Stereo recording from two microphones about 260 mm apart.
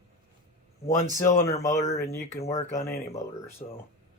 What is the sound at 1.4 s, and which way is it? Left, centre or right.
Speech, centre.